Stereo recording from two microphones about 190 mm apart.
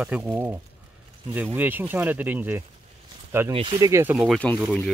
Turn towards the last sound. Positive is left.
turn(degrees=5)  # may be behind; listen again after turning